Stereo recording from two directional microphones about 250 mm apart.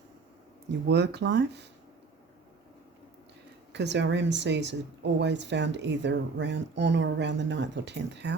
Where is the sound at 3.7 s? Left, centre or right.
Right.